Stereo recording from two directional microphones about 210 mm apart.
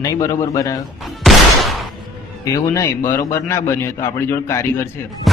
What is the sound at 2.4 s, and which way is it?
A man's voice, 15° left (ahead or behind).